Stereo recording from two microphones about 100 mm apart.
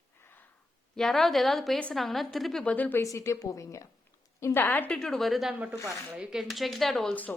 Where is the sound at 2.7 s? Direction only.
15° left (ahead or behind).